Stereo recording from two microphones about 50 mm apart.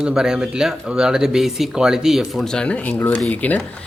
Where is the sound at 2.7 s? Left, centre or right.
Left.